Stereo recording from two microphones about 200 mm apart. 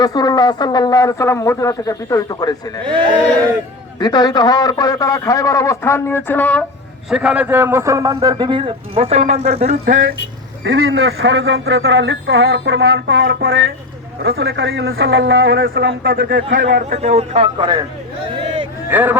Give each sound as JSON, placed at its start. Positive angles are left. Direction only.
{"t": 0.0, "sound": "a man's voice", "side_deg": 20}
{"t": 4.0, "sound": "a man's voice", "side_deg": 20}
{"t": 7.1, "sound": "a man's voice", "side_deg": -5}
{"t": 9.8, "sound": "speech", "side_deg": -45}
{"t": 10.6, "sound": "a man's voice", "side_deg": -65}
{"t": 14.2, "sound": "a man's voice", "side_deg": -50}
{"t": 16.9, "sound": "a man's voice", "side_deg": -35}
{"t": 18.4, "sound": "a sound", "side_deg": -25}
{"t": 18.9, "sound": "speech", "side_deg": -10}